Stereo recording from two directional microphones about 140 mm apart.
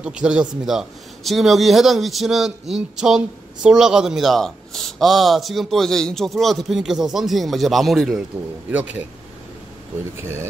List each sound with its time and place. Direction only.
0.0 s a man's voice: 5° right (ahead or behind)
10.2 s speech: 20° right (ahead or behind)